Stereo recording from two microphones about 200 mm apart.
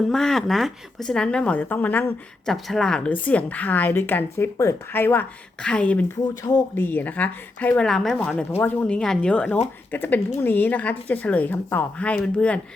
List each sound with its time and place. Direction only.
0.0 s a woman's voice: centre (ahead or behind)